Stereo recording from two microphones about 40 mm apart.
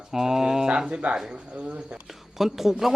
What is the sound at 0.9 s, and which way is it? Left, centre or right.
Speech, right.